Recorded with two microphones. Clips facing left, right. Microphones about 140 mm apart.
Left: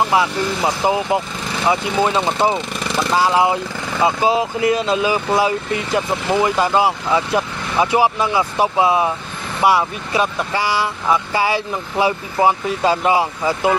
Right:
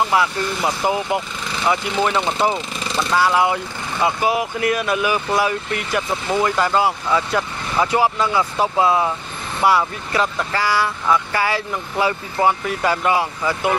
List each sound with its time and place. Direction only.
0.0 s speech: 25° left (ahead or behind)